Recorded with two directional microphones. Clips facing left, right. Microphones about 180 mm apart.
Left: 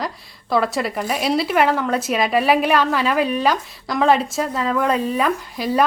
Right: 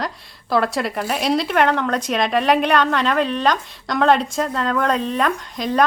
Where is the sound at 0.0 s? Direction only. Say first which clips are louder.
Even; centre (ahead or behind).